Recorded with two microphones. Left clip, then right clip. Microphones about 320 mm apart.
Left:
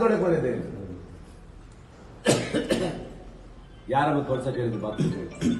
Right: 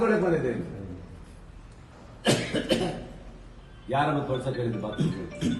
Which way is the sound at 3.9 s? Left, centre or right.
Centre.